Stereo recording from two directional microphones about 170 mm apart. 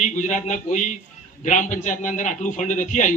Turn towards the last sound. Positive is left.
turn(degrees=50)  # may be behind; listen again after turning